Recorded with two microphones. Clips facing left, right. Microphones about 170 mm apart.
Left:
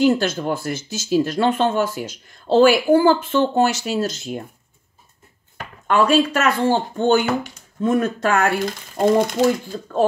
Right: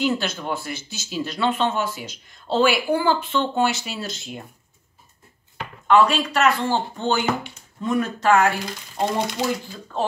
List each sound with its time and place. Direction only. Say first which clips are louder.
0.0 s speech: left 6 dB; 45° left (ahead or behind)
5.6 s speech: right 1 dB; 45° left (ahead or behind)